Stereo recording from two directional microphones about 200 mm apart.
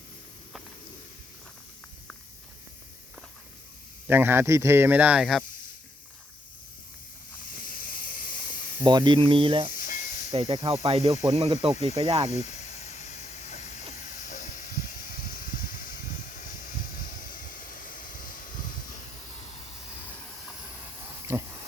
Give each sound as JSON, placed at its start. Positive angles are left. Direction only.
{"t": 4.1, "sound": "speech", "side_deg": -10}
{"t": 7.6, "sound": "hiss", "side_deg": 45}
{"t": 8.8, "sound": "speech", "side_deg": -20}
{"t": 9.7, "sound": "hiss", "side_deg": 40}
{"t": 10.3, "sound": "speech", "side_deg": -25}
{"t": 12.3, "sound": "snake", "side_deg": 35}
{"t": 13.9, "sound": "a sound", "side_deg": 40}
{"t": 21.2, "sound": "a sound", "side_deg": -10}